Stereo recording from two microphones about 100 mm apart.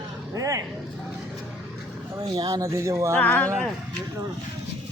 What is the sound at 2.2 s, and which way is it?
Speech, 40° right (ahead or behind).